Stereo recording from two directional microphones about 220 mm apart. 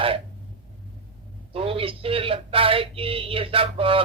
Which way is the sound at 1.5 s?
25° right (ahead or behind).